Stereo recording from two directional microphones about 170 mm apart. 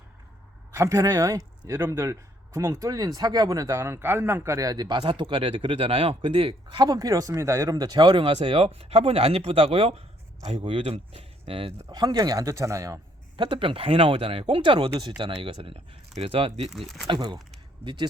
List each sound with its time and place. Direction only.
0.7 s speech: 20° right (ahead or behind); by 16.6 s 35° right (ahead or behind)
16.6 s speech: centre (ahead or behind)
17.1 s speech: 25° right (ahead or behind)
17.8 s speech: 10° right (ahead or behind)